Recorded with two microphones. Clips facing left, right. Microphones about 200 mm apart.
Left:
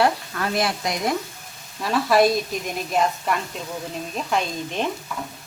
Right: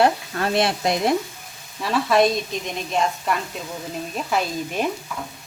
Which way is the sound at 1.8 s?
Centre (ahead or behind).